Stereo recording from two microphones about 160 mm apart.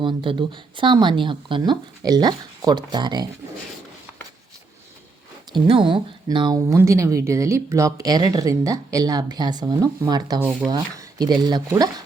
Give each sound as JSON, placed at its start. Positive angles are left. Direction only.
{"t": 0.0, "sound": "speech", "side_deg": -30}
{"t": 5.5, "sound": "speech", "side_deg": -30}